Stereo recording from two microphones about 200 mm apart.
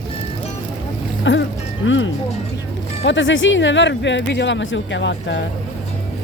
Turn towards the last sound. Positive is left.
turn(degrees=65)  # may be behind; listen again after turning